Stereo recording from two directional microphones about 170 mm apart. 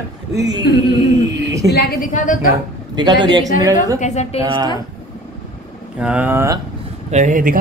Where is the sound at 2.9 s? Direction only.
25° right (ahead or behind).